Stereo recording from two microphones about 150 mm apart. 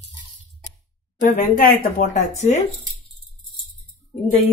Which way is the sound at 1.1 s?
65° left (ahead or behind).